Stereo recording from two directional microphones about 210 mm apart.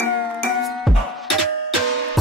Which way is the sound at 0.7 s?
Centre (ahead or behind).